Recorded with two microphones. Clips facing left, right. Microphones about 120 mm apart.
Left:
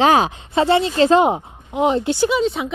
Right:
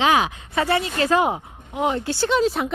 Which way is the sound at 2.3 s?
Centre (ahead or behind).